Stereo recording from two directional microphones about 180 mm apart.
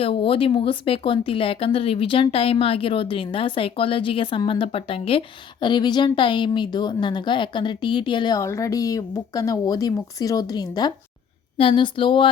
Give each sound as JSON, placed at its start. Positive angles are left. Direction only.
{"t": 0.0, "sound": "speech", "side_deg": 30}